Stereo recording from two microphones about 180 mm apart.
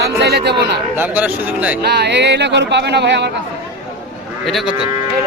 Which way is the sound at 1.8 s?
70° right (ahead or behind).